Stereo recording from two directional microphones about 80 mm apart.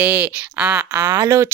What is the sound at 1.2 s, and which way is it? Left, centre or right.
Speech, right.